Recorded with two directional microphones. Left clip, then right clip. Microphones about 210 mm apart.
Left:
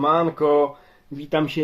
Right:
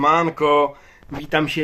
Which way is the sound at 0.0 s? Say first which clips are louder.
Right 2 dB; 10° right (ahead or behind).